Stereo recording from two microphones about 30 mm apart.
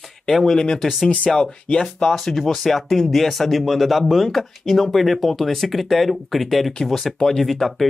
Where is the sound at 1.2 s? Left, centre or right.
Centre.